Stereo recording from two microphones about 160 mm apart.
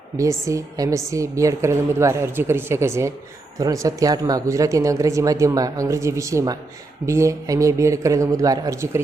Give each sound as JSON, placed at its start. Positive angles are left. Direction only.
{"t": 0.2, "sound": "a woman's voice", "side_deg": -20}